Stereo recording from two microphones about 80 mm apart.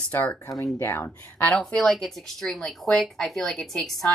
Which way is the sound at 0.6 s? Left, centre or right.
Left.